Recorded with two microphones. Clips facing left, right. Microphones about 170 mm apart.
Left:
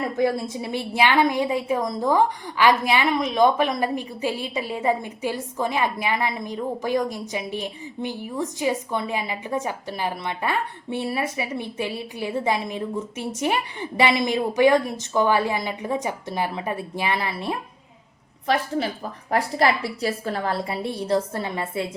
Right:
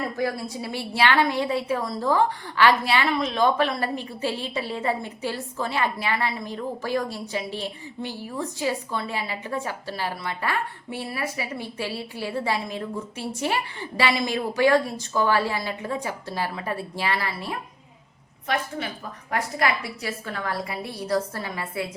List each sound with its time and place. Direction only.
0.2 s a woman's voice: 25° left (ahead or behind)
19.3 s a woman's voice: 35° left (ahead or behind)